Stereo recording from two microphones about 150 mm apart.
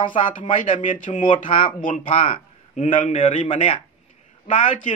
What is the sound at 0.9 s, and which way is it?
Speech, 60° left (ahead or behind).